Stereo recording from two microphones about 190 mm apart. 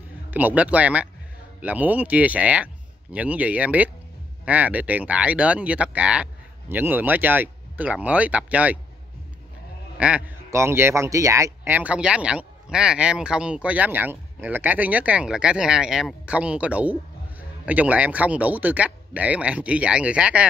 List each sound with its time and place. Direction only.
0.3 s a man's voice: 10° right (ahead or behind)
9.9 s a man's voice: 5° right (ahead or behind)